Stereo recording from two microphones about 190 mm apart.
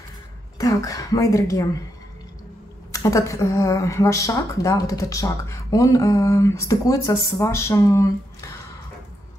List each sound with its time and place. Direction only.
0.6 s speech: 20° left (ahead or behind)
2.9 s speech: 15° left (ahead or behind)